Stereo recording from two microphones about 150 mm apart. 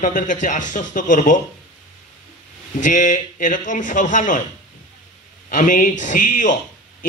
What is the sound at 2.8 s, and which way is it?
A man's voice, 55° left (ahead or behind).